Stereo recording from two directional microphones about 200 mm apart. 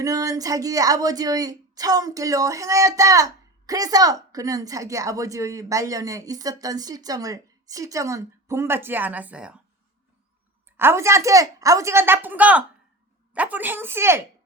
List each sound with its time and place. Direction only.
0.0 s a woman's voice: 15° right (ahead or behind)
10.8 s a woman's voice: 10° right (ahead or behind)